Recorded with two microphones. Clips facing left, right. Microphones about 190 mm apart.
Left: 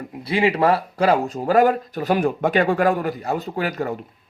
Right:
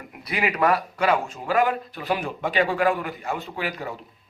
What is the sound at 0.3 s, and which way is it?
Speech, 30° left (ahead or behind).